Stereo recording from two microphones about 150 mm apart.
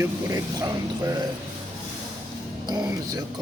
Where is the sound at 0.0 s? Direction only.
20° right (ahead or behind).